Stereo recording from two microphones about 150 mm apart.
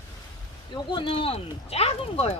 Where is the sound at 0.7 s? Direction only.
35° left (ahead or behind).